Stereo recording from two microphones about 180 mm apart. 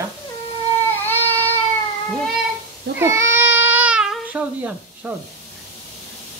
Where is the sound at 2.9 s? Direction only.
15° right (ahead or behind).